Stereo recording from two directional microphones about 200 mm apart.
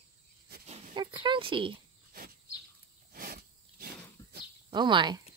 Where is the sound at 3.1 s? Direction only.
50° right (ahead or behind).